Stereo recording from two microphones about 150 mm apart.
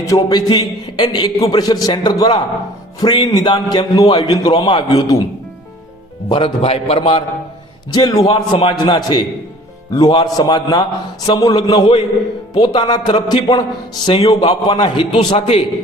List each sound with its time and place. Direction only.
0.0 s a man's voice: 20° left (ahead or behind)
6.2 s a man's voice: 35° left (ahead or behind)
7.9 s a man's voice: 25° left (ahead or behind)
8.3 s a man's voice: 35° left (ahead or behind)